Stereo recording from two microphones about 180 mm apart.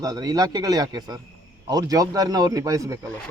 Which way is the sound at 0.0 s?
20° right (ahead or behind).